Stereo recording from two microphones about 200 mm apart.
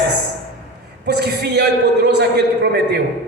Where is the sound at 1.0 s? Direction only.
55° right (ahead or behind).